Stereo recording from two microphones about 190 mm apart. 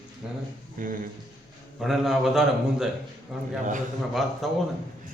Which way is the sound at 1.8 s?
Centre (ahead or behind).